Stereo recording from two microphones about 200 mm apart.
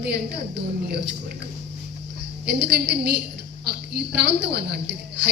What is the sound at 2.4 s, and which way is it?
A woman's voice, 55° right (ahead or behind).